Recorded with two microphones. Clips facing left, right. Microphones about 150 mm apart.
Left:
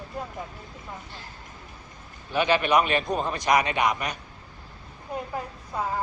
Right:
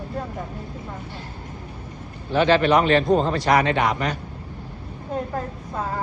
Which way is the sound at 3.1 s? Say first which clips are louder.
Right 8 dB; 25° right (ahead or behind).